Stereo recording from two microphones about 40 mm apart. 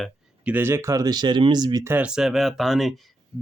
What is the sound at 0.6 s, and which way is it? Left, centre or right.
Speech, right.